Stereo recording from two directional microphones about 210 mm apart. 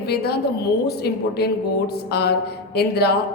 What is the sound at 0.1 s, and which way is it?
A woman's voice, 50° left (ahead or behind).